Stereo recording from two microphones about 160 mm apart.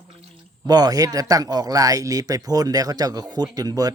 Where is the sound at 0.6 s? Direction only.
25° right (ahead or behind).